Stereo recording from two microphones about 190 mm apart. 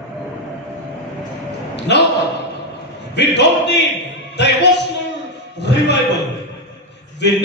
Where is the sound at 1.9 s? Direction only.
65° left (ahead or behind).